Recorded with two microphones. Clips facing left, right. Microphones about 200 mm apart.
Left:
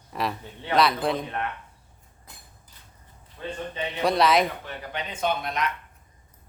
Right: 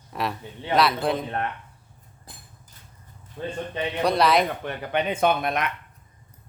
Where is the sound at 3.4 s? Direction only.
45° right (ahead or behind).